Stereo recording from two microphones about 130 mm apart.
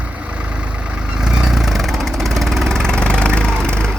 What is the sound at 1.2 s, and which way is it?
Vehicle, 5° right (ahead or behind).